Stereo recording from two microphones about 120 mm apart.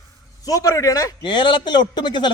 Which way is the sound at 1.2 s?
40° left (ahead or behind).